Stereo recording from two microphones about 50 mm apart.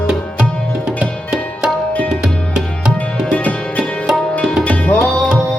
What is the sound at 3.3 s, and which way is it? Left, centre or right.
Music, left.